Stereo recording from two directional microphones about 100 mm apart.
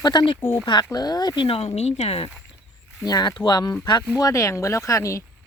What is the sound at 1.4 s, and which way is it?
Speech, 70° left (ahead or behind).